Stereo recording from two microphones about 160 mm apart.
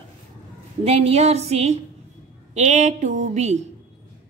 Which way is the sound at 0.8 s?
40° right (ahead or behind).